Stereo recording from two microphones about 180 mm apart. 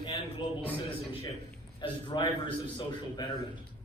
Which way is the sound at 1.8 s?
25° left (ahead or behind).